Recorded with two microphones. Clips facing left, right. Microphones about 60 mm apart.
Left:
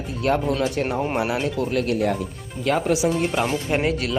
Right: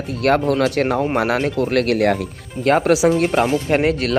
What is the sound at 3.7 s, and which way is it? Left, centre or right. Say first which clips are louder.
Speech: right 5 dB; right.